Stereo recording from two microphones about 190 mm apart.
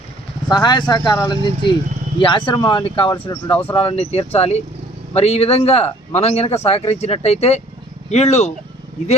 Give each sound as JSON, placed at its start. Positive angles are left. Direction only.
{"t": 0.5, "sound": "speech", "side_deg": 20}